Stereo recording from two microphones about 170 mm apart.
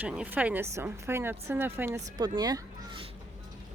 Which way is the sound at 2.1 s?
25° right (ahead or behind).